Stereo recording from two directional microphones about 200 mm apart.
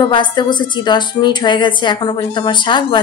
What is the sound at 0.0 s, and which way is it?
A woman's voice, 20° left (ahead or behind).